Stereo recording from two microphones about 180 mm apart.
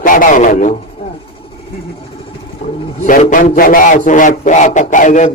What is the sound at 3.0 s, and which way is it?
A man's voice, 45° left (ahead or behind).